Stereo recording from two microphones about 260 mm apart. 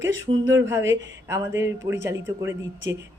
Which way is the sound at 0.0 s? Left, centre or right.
Right.